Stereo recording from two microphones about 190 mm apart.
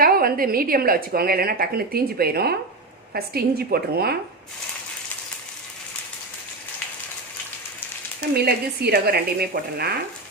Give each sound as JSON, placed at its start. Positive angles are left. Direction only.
{"t": 0.0, "sound": "a woman's voice", "side_deg": -50}
{"t": 8.4, "sound": "speech", "side_deg": -55}